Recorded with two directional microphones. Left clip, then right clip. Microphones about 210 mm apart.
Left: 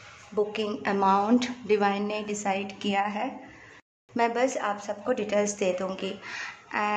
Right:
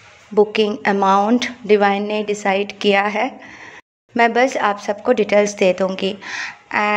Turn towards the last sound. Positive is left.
turn(degrees=-30)  # may be behind; listen again after turning